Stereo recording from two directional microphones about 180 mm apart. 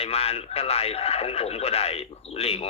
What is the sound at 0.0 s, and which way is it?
Speech, 35° left (ahead or behind).